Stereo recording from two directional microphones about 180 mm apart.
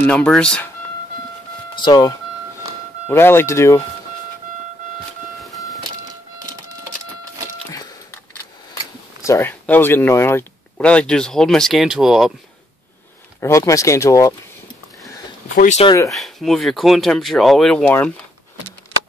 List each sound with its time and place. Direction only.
0.0 s speech: 5° left (ahead or behind)
1.8 s speech: 20° left (ahead or behind)
5.4 s a sound: centre (ahead or behind)
9.2 s speech: 15° left (ahead or behind); by 12.3 s centre (ahead or behind)
13.4 s speech: 15° left (ahead or behind)
15.5 s speech: 40° left (ahead or behind)
16.1 s speech: centre (ahead or behind)